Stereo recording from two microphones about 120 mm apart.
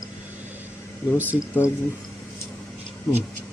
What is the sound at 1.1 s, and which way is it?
Speech, 15° right (ahead or behind).